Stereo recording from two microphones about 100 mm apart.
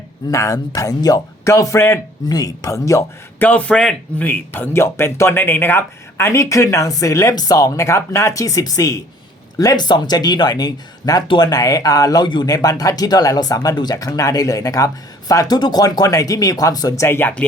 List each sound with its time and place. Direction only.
0.3 s a man's voice: 30° left (ahead or behind)
2.3 s a man's voice: 35° left (ahead or behind)
3.3 s a man's voice: 15° left (ahead or behind)